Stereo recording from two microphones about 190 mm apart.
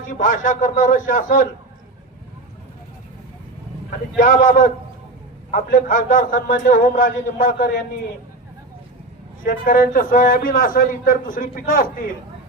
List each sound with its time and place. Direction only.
0.1 s a man's voice: 45° left (ahead or behind)
4.2 s a man's voice: 45° left (ahead or behind)
9.4 s a man's voice: 45° left (ahead or behind)